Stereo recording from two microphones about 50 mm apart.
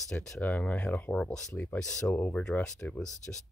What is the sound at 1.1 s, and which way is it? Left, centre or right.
Speech, left.